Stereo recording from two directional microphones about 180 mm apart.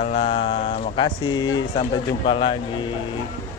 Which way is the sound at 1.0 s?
25° left (ahead or behind).